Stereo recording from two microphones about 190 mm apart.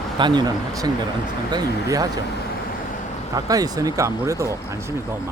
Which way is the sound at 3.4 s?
20° right (ahead or behind).